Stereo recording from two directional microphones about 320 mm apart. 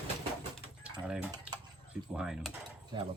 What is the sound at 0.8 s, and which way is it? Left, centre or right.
Dishes, centre.